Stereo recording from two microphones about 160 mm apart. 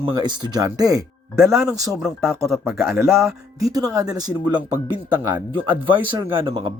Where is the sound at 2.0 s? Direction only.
Centre (ahead or behind).